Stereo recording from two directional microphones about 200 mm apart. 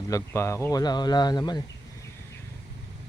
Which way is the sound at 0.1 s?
15° left (ahead or behind).